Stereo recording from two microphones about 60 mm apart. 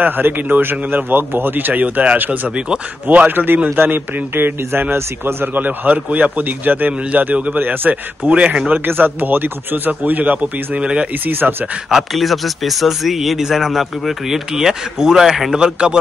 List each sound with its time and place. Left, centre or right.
0.0 s a man's voice: right; by 11.1 s centre
11.2 s a man's voice: right
11.9 s speech: centre